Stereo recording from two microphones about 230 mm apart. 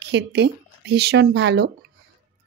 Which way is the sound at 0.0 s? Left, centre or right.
Right.